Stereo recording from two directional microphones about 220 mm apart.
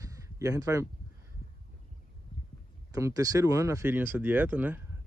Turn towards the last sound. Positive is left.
turn(degrees=-10)  # may be behind; listen again after turning